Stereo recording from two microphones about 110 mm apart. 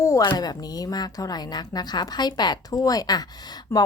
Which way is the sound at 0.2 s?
40° left (ahead or behind).